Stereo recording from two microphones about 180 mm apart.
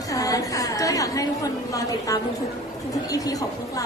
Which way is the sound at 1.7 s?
20° left (ahead or behind).